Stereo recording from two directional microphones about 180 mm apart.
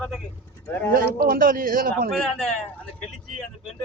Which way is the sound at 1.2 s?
50° right (ahead or behind).